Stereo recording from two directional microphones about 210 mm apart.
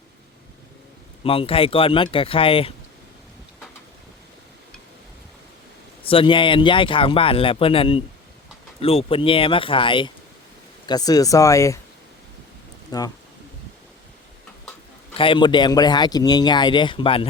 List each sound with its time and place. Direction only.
1.2 s a man's voice: 25° left (ahead or behind)
6.0 s a man's voice: 25° left (ahead or behind)
12.9 s speech: 20° left (ahead or behind)
15.1 s a man's voice: 25° left (ahead or behind)